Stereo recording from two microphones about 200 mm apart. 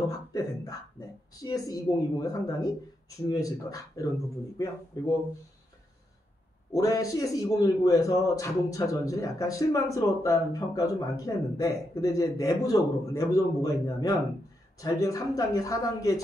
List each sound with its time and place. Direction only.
0.1 s a sound: 20° left (ahead or behind)
1.4 s a man's voice: 20° left (ahead or behind)
6.7 s a man's voice: 15° left (ahead or behind)